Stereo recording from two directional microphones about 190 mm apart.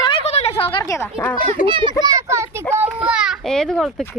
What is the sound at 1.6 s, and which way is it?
A child's voice, 25° right (ahead or behind).